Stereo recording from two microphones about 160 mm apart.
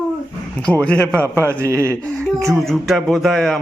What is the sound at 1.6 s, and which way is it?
Speech, 15° right (ahead or behind).